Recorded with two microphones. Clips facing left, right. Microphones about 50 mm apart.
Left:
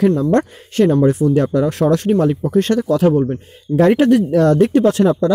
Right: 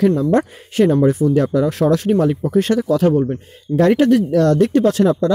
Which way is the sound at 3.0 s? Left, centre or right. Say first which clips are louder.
Left 1 dB; centre.